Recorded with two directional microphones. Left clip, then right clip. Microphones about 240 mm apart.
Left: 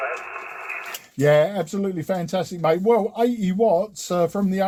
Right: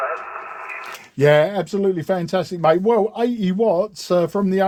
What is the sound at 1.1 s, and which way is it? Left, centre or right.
Speech, right.